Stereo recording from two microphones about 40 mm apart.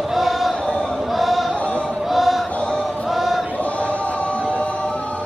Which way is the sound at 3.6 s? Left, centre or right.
Left.